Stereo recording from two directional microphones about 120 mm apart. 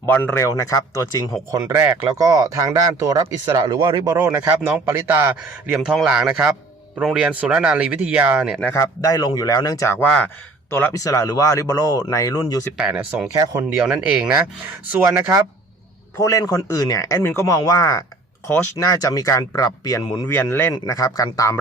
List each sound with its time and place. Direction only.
0.0 s speech: 15° left (ahead or behind)
1.5 s speech: 25° right (ahead or behind)
1.7 s speech: 15° right (ahead or behind)
2.0 s speech: 30° right (ahead or behind)
5.6 s speech: 5° right (ahead or behind)
8.7 s speech: 25° left (ahead or behind)
12.7 s speech: 5° right (ahead or behind)
13.3 s speech: 30° right (ahead or behind)
13.7 s speech: 10° right (ahead or behind)
14.3 s speech: 20° right (ahead or behind)
16.1 s speech: 25° left (ahead or behind)
20.2 s a man's voice: 20° left (ahead or behind)
20.8 s speech: 30° left (ahead or behind)